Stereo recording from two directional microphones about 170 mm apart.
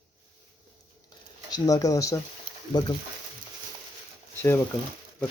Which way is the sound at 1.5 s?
20° left (ahead or behind).